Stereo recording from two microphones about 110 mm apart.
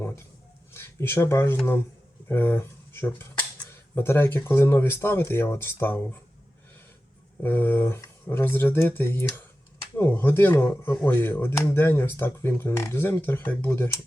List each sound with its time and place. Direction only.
0.7 s speech: 20° left (ahead or behind)
7.4 s speech: 20° left (ahead or behind)